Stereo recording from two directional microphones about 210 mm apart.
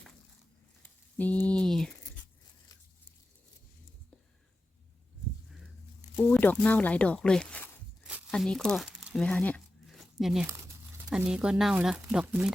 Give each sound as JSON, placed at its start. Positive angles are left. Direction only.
{"t": 0.8, "sound": "a sound", "side_deg": 10}
{"t": 6.1, "sound": "speech", "side_deg": 10}
{"t": 8.3, "sound": "crumpling", "side_deg": 5}
{"t": 10.4, "sound": "speech", "side_deg": -15}